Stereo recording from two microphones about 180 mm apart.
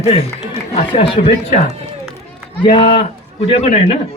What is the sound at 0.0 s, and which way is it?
Speech, 30° left (ahead or behind).